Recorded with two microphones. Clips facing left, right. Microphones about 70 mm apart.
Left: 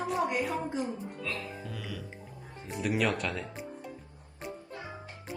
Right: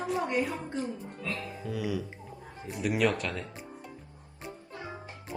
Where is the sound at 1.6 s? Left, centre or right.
Centre.